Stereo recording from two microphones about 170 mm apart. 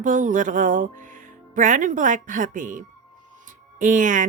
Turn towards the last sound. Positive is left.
turn(degrees=-50)  # may be behind; listen again after turning